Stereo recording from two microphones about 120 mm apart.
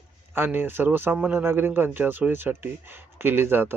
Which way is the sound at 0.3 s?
15° right (ahead or behind).